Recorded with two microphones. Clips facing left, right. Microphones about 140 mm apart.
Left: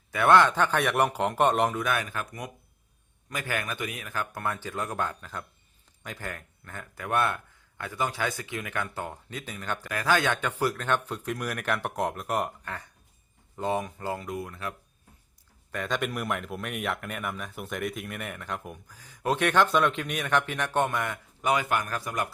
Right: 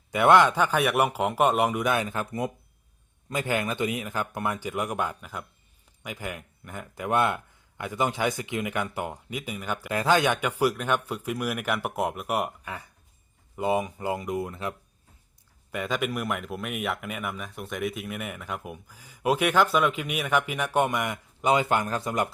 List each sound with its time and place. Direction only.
0.1 s speech: 20° right (ahead or behind)
9.9 s speech: 20° right (ahead or behind)
15.7 s speech: 10° right (ahead or behind)